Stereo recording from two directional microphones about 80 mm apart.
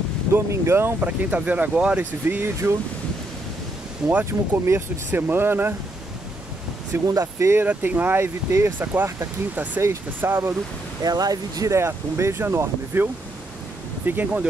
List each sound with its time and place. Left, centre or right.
0.3 s speech: right; by 2.0 s centre
2.2 s speech: right
4.3 s speech: right
6.9 s speech: right
7.6 s speech: right
11.0 s speech: right; by 14.5 s centre